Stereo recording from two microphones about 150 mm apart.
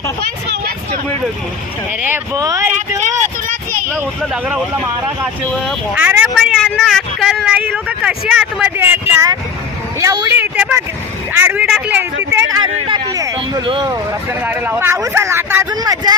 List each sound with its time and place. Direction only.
2.0 s speech: 15° right (ahead or behind)
4.2 s speech: 5° right (ahead or behind)
6.6 s speech: 5° left (ahead or behind)
8.8 s speech: 15° right (ahead or behind)
14.4 s speech: 10° right (ahead or behind)
15.7 s speech: 25° right (ahead or behind)